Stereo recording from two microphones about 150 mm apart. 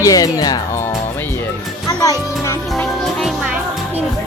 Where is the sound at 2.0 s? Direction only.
25° left (ahead or behind).